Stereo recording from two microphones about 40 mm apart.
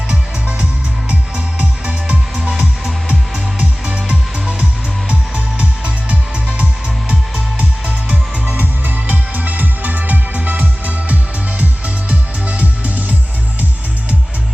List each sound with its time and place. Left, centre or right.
0.1 s music: right
2.3 s music: centre; by 6.7 s right
7.9 s music: right
8.5 s music: right